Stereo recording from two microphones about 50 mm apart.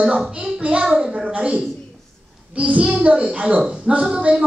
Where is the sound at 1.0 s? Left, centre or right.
Centre.